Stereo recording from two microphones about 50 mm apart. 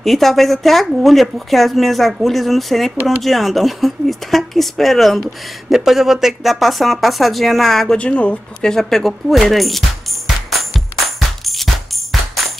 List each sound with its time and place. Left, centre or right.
0.0 s speech: centre
8.0 s speech: left
8.6 s speech: centre
11.1 s music: centre